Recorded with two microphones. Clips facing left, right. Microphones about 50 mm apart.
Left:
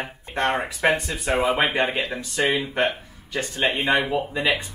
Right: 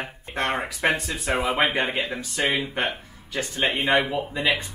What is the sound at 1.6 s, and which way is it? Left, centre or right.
Speech, left.